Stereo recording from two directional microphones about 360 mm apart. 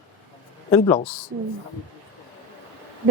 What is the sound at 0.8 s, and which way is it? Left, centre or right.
Speech, centre.